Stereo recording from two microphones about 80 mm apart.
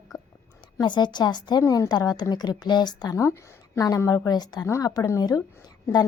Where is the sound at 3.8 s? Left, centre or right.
Left.